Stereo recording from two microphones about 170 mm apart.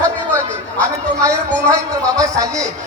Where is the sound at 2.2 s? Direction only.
20° right (ahead or behind).